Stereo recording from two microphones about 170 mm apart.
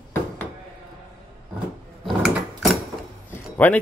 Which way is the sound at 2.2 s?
Centre (ahead or behind).